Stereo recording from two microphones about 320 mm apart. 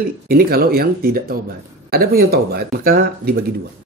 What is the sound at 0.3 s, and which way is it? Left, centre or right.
Speech, right.